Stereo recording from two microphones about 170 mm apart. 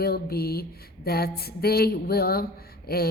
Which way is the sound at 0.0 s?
65° left (ahead or behind).